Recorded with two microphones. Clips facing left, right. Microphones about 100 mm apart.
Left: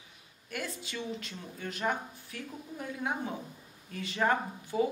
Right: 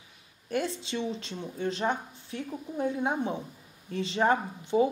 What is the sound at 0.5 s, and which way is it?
A woman's voice, 25° right (ahead or behind).